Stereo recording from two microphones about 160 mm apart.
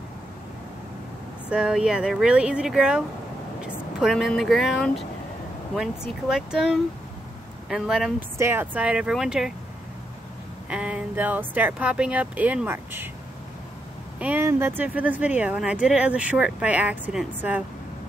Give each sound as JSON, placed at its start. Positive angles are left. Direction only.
{"t": 1.5, "sound": "speech", "side_deg": -5}
{"t": 8.4, "sound": "speech", "side_deg": -15}
{"t": 10.7, "sound": "speech", "side_deg": -5}
{"t": 14.2, "sound": "speech", "side_deg": -15}